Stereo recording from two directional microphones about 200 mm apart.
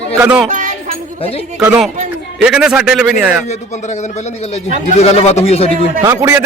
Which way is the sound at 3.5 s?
35° left (ahead or behind).